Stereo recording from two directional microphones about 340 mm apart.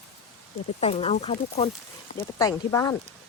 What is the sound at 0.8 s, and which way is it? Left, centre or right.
Speech, centre.